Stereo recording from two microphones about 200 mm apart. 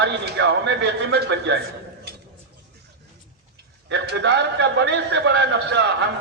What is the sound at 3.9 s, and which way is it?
A man's voice, 60° right (ahead or behind).